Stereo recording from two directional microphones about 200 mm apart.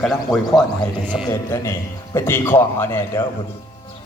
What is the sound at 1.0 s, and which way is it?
Speech, 5° right (ahead or behind).